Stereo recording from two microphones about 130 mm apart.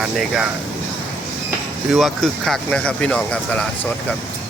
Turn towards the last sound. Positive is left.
turn(degrees=10)  # may be behind; listen again after turning